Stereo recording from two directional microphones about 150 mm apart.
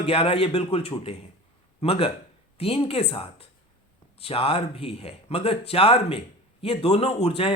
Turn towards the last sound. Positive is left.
turn(degrees=40)  # may be behind; listen again after turning